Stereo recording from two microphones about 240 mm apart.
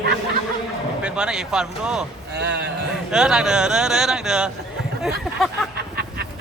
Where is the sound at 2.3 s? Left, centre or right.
Right.